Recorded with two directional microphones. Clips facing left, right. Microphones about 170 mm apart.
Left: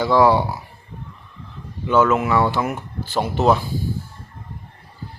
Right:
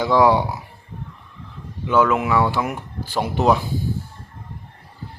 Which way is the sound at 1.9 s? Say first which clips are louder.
Left 1 dB; 10° right (ahead or behind).